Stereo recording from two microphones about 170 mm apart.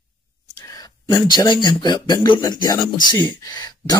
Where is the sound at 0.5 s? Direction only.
20° left (ahead or behind).